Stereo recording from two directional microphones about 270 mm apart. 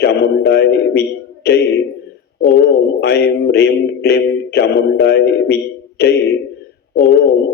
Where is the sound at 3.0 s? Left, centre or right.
Left.